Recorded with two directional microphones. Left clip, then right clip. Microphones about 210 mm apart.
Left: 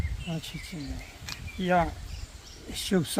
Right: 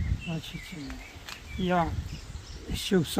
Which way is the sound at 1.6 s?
10° right (ahead or behind).